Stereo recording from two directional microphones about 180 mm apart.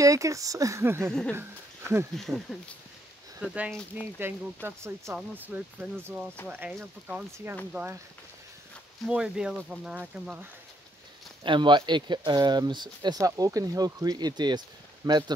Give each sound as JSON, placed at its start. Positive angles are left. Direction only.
{"t": 0.0, "sound": "speech", "side_deg": -15}
{"t": 2.1, "sound": "speech", "side_deg": 0}
{"t": 6.4, "sound": "speech", "side_deg": 10}
{"t": 6.8, "sound": "speech", "side_deg": -10}
{"t": 9.0, "sound": "speech", "side_deg": -5}
{"t": 11.4, "sound": "speech", "side_deg": -25}